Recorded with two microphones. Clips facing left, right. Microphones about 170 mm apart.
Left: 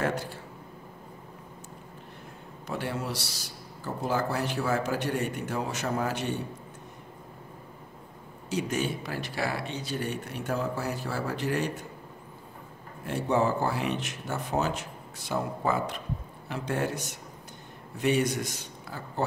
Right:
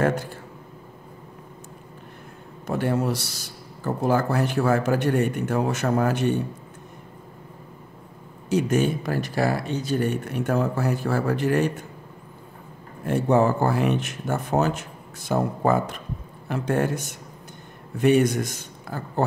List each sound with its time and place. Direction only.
2.6 s speech: 50° right (ahead or behind)
8.5 s speech: 50° right (ahead or behind)
13.0 s speech: 50° right (ahead or behind)